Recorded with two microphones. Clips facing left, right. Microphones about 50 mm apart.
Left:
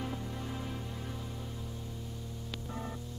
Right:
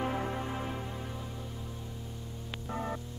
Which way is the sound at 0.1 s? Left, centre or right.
Right.